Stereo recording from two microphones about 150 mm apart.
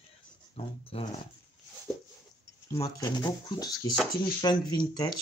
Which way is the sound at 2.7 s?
20° left (ahead or behind).